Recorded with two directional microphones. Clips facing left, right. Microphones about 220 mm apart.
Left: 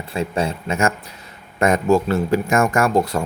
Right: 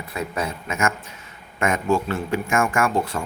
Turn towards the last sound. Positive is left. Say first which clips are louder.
# left 4 dB
turn(degrees=40)  # may be behind; listen again after turning